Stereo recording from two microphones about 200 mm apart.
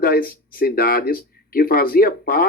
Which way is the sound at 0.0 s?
45° left (ahead or behind).